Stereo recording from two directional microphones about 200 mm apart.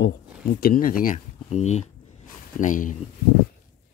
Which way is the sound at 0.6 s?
45° left (ahead or behind).